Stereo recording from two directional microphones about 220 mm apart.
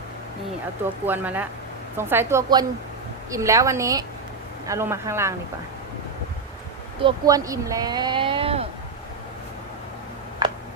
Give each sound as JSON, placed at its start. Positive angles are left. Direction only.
{"t": 1.0, "sound": "a woman's voice", "side_deg": -10}
{"t": 7.0, "sound": "speech", "side_deg": -15}